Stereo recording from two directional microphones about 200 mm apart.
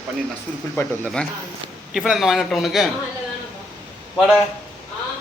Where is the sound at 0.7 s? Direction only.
5° left (ahead or behind).